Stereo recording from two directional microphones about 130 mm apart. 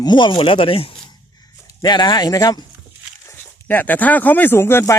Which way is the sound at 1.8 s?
35° left (ahead or behind).